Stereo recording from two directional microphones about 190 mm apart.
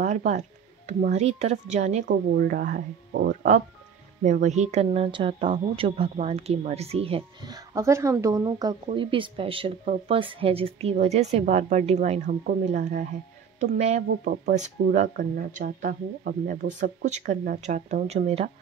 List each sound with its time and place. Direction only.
0.0 s music: 40° right (ahead or behind)
0.8 s a woman's voice: 35° right (ahead or behind)
2.0 s a woman's voice: 50° right (ahead or behind); by 14.0 s 35° right (ahead or behind)
14.2 s a woman's voice: 50° right (ahead or behind); by 18.5 s 35° right (ahead or behind)